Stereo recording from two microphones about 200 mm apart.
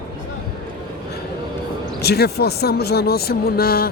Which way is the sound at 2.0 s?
55° left (ahead or behind).